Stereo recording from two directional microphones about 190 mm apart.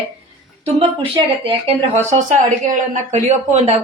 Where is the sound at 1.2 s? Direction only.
30° right (ahead or behind).